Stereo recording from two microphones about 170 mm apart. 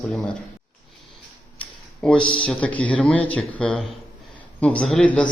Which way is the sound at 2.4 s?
5° left (ahead or behind).